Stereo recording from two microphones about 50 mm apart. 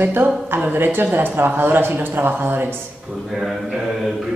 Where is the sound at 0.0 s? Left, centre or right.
Right.